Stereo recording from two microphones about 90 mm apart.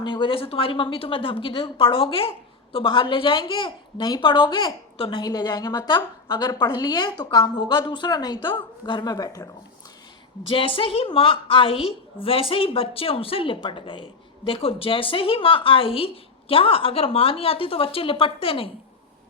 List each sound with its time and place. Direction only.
0.0 s a woman's voice: 65° left (ahead or behind); by 2.3 s 80° left
2.7 s a woman's voice: 65° left (ahead or behind)
4.9 s a woman's voice: 70° left (ahead or behind)
5.2 s a woman's voice: 50° left (ahead or behind)
10.5 s a woman's voice: 85° left